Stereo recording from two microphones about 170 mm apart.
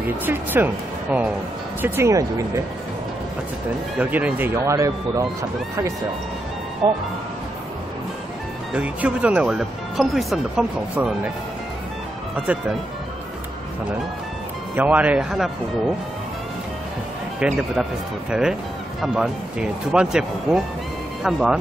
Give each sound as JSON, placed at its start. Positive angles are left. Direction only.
{"t": 0.2, "sound": "speech", "side_deg": -10}
{"t": 1.8, "sound": "speech", "side_deg": -15}
{"t": 4.0, "sound": "speech", "side_deg": -10}
{"t": 8.7, "sound": "speech", "side_deg": -5}
{"t": 12.4, "sound": "speech", "side_deg": -5}
{"t": 14.8, "sound": "speech", "side_deg": -10}
{"t": 17.4, "sound": "speech", "side_deg": -5}